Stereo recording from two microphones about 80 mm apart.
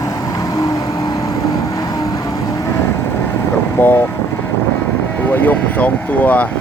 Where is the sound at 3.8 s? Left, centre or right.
Left.